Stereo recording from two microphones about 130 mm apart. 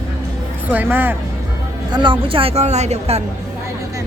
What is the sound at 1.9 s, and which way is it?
Speech, 35° right (ahead or behind).